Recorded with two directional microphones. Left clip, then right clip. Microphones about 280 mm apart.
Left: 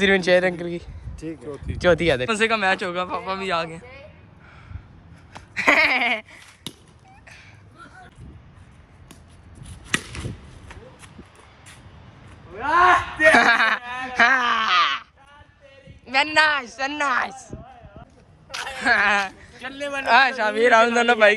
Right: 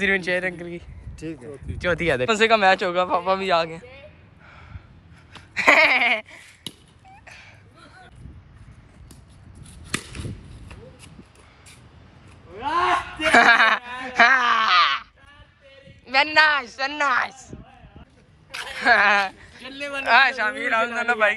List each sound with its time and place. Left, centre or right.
0.0 s speech: centre
1.2 s speech: right
1.8 s speech: centre
5.6 s a sound: centre
12.5 s a woman's voice: centre
16.1 s speech: centre
18.5 s speech: centre